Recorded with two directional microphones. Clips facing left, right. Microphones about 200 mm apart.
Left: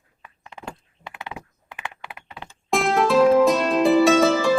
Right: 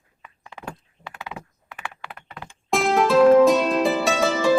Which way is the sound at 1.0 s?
20° left (ahead or behind).